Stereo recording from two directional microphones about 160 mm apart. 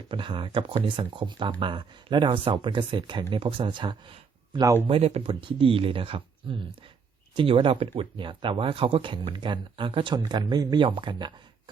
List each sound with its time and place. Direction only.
0.1 s speech: 30° right (ahead or behind)
4.8 s speech: 40° right (ahead or behind)